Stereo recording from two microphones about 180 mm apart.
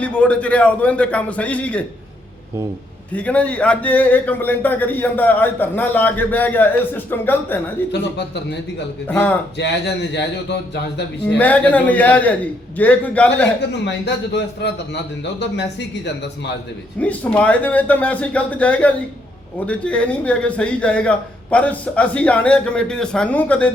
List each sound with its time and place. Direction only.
0.0 s a man's voice: 5° left (ahead or behind)
3.1 s a man's voice: 5° left (ahead or behind)
9.0 s a man's voice: 10° left (ahead or behind)
9.6 s speech: 70° left (ahead or behind)
11.3 s a man's voice: 10° left (ahead or behind)
13.8 s speech: 70° left (ahead or behind)
17.0 s a man's voice: 10° left (ahead or behind)